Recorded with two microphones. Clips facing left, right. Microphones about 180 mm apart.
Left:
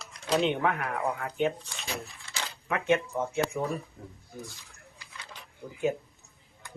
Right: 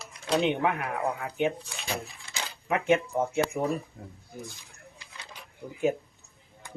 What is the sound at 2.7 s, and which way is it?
Speech, 20° right (ahead or behind).